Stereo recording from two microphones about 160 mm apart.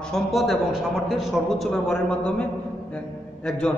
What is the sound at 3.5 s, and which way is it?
Speech, 10° left (ahead or behind).